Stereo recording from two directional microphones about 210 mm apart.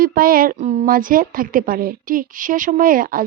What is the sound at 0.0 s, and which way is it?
A woman's voice, 45° right (ahead or behind).